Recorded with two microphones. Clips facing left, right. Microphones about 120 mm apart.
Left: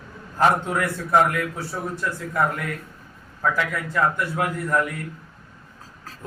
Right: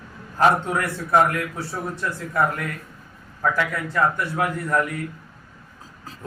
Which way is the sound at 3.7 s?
Centre (ahead or behind).